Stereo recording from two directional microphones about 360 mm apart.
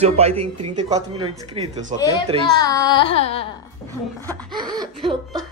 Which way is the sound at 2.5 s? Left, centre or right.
Centre.